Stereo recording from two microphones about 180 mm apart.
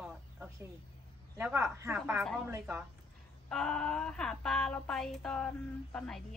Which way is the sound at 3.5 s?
5° left (ahead or behind).